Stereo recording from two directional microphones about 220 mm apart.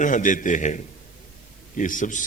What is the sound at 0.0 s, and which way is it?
A man's voice, 35° left (ahead or behind).